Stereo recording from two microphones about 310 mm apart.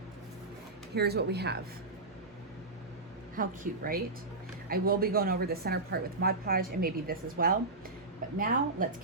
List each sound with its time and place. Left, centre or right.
0.9 s speech: right
3.3 s a woman's voice: right